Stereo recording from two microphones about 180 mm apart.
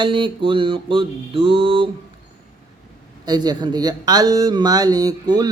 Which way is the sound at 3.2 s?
20° right (ahead or behind).